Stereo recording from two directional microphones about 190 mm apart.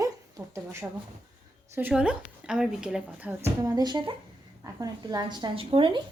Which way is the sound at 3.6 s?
20° right (ahead or behind).